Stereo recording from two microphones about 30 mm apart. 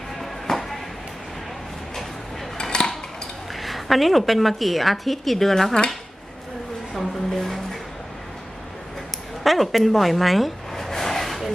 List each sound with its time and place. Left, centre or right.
0.5 s a sound: centre
2.6 s dishes: left
3.5 s a woman's voice: centre
6.9 s a sound: centre
9.4 s speech: centre
10.9 s vehicle: centre